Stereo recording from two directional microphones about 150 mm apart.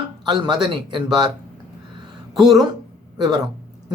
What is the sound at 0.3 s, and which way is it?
Speech, 30° right (ahead or behind).